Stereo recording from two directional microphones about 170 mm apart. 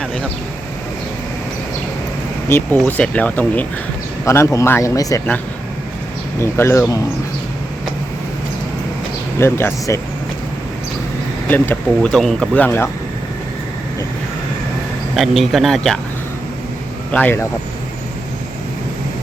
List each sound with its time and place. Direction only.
2.7 s speech: 5° left (ahead or behind)
6.4 s speech: 15° left (ahead or behind)
9.4 s speech: 15° left (ahead or behind)
11.4 s speech: 10° left (ahead or behind)
15.1 s speech: centre (ahead or behind)
17.1 s speech: 10° left (ahead or behind)